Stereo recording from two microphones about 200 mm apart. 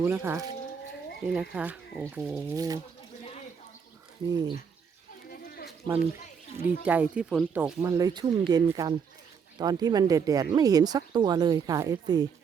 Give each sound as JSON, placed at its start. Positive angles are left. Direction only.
{"t": 0.0, "sound": "speech", "side_deg": -10}
{"t": 2.6, "sound": "speech", "side_deg": -15}
{"t": 4.3, "sound": "speech", "side_deg": -20}
{"t": 5.3, "sound": "a sound", "side_deg": 50}
{"t": 6.6, "sound": "speech", "side_deg": -10}